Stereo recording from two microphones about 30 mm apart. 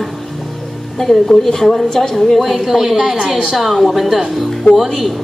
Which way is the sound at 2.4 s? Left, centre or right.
Centre.